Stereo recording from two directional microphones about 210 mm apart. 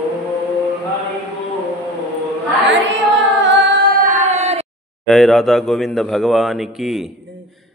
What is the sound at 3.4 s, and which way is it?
Female singing, 55° right (ahead or behind).